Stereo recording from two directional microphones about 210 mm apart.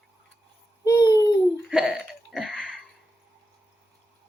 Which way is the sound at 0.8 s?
15° left (ahead or behind).